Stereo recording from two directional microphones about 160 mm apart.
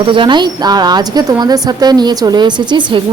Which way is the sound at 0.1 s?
30° right (ahead or behind).